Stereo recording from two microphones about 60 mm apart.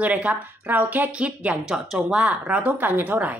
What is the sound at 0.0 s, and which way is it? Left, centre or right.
A woman's voice, right.